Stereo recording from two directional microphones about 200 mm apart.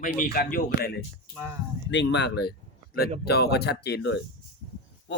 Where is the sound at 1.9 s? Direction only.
65° left (ahead or behind).